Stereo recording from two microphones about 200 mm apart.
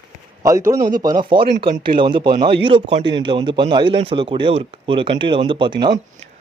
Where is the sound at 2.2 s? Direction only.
50° right (ahead or behind).